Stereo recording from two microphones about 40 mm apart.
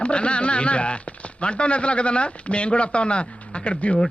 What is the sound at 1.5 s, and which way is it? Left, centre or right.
A man's voice, left.